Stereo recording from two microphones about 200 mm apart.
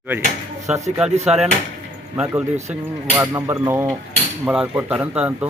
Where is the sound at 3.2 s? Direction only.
15° right (ahead or behind).